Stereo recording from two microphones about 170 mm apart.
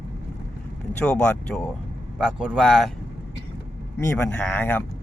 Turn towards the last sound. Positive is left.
turn(degrees=10)  # may be behind; listen again after turning